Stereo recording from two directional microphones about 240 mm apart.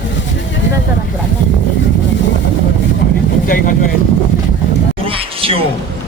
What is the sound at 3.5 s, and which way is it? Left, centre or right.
Speech, left.